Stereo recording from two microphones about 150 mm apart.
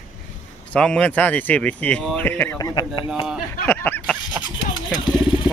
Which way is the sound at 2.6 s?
25° left (ahead or behind).